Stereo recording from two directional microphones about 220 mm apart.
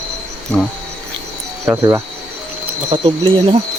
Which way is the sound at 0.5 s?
5° left (ahead or behind).